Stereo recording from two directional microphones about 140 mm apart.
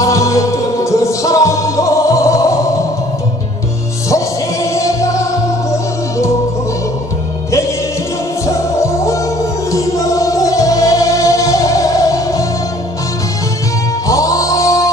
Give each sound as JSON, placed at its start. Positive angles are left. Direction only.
{"t": 0.0, "sound": "music", "side_deg": 20}
{"t": 4.1, "sound": "music", "side_deg": 20}
{"t": 8.5, "sound": "music", "side_deg": 20}
{"t": 14.0, "sound": "music", "side_deg": 25}